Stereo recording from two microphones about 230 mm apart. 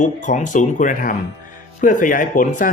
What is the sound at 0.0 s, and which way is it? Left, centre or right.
Speech, left.